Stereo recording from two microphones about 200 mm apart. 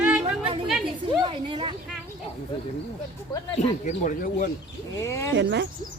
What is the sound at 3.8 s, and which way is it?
Speech, 40° left (ahead or behind).